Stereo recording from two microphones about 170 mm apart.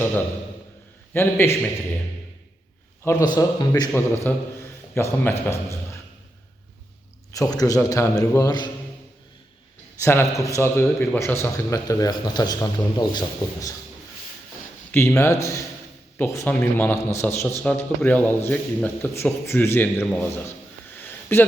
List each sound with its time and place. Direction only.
1.1 s a man's voice: 15° left (ahead or behind)
3.0 s a man's voice: 20° left (ahead or behind)
7.3 s a man's voice: 20° left (ahead or behind)
10.0 s a man's voice: 15° left (ahead or behind)
14.9 s a man's voice: 15° left (ahead or behind)
21.1 s a sound: 10° left (ahead or behind)